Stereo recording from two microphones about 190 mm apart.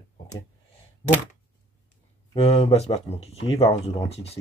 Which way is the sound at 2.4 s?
35° left (ahead or behind).